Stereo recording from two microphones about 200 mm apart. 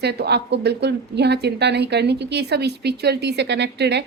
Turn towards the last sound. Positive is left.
turn(degrees=-60)  # may be behind; listen again after turning